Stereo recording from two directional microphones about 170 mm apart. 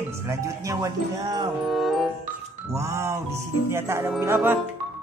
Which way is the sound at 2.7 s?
15° right (ahead or behind).